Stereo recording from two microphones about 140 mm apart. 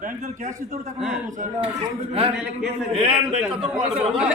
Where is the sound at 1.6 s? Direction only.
45° right (ahead or behind).